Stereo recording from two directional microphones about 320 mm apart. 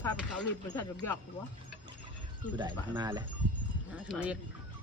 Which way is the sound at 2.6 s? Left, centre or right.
Centre.